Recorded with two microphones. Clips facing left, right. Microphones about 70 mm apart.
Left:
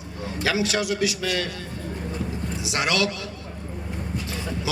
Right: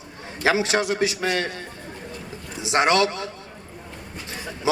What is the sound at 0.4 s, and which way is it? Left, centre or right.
A man's voice, right.